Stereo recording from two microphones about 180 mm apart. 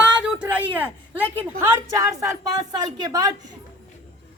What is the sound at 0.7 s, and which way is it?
A woman's voice, 10° right (ahead or behind).